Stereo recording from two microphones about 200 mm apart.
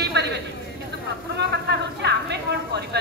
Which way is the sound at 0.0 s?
55° right (ahead or behind).